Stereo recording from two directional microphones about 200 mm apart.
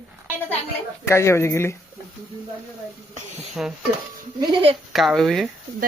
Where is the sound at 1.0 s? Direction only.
15° left (ahead or behind).